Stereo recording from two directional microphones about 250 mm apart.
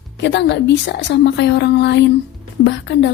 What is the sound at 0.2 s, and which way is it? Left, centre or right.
A woman's voice, left.